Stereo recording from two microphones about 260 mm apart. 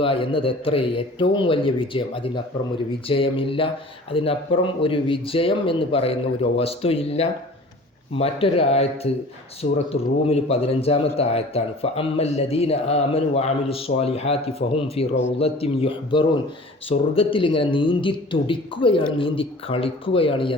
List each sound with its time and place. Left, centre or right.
0.0 s a man's voice: left